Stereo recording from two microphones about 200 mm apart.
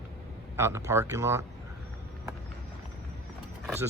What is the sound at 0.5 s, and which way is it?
Speech, 15° right (ahead or behind).